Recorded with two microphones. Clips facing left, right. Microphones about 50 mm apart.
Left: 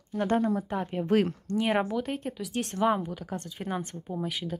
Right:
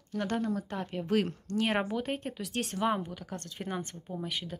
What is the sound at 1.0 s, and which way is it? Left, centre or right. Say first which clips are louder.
Speech: left 4 dB; left.